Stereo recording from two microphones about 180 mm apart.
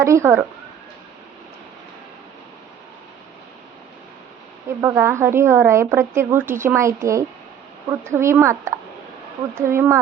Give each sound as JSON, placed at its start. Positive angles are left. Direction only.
{"t": 0.0, "sound": "a woman's voice", "side_deg": -15}
{"t": 4.8, "sound": "a woman's voice", "side_deg": -15}